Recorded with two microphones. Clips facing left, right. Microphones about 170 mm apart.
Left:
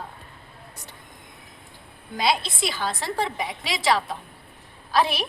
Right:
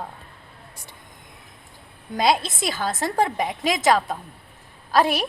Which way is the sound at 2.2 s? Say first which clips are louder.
Right 3 dB; 45° right (ahead or behind).